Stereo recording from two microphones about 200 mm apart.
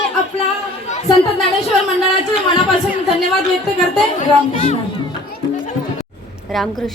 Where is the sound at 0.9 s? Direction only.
35° left (ahead or behind).